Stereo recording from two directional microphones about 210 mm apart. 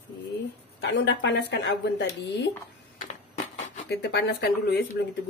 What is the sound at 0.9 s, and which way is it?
Speech, 60° left (ahead or behind).